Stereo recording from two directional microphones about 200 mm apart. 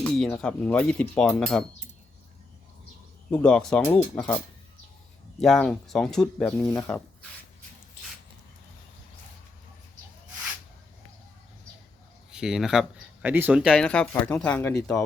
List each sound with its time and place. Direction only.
0.0 s speech: 5° left (ahead or behind)
3.3 s speech: 5° left (ahead or behind)
5.4 s speech: 5° left (ahead or behind)
6.6 s speech: 15° left (ahead or behind)
12.3 s speech: 5° right (ahead or behind)